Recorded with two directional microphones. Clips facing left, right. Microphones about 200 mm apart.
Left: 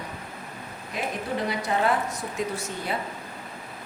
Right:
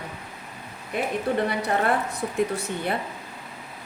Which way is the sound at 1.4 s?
60° right (ahead or behind).